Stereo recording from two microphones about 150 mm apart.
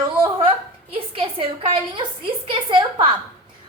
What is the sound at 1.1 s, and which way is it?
Speech, 35° right (ahead or behind).